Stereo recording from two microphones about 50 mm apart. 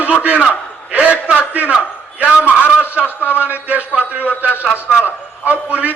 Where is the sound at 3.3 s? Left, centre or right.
Right.